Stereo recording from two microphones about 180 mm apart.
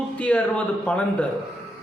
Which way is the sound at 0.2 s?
5° left (ahead or behind).